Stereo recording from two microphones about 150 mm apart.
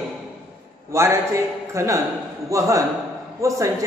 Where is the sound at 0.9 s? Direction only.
20° right (ahead or behind).